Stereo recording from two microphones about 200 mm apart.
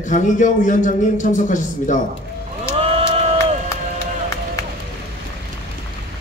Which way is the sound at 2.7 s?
30° right (ahead or behind).